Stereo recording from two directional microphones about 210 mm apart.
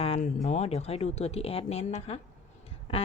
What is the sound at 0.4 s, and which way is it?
A woman's voice, 30° left (ahead or behind).